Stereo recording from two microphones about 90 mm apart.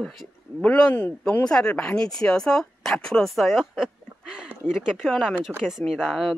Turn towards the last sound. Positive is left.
turn(degrees=5)  # may be behind; listen again after turning